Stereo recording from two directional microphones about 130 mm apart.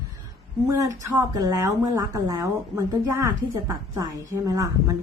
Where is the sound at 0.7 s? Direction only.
25° right (ahead or behind).